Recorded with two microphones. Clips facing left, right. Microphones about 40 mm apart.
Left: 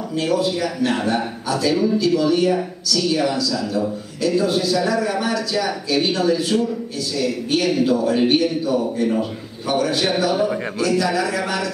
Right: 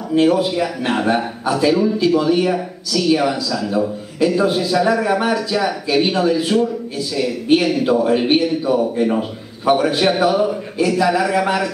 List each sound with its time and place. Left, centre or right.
0.1 s a man's voice: right